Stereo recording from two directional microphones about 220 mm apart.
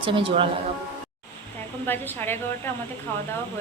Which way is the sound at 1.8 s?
10° left (ahead or behind).